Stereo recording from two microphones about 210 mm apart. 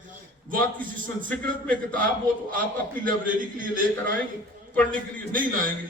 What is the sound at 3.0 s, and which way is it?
A man's voice, 40° right (ahead or behind).